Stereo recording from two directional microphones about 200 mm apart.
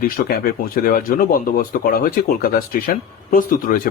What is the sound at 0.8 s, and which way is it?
Speech, 45° left (ahead or behind).